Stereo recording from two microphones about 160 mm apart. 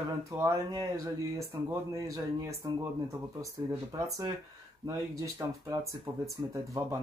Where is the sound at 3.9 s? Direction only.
20° right (ahead or behind).